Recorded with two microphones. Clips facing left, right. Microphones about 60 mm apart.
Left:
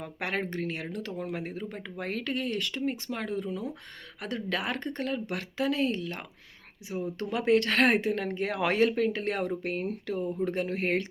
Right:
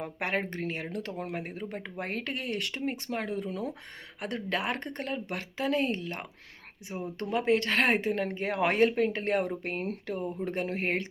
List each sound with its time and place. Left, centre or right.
0.0 s speech: right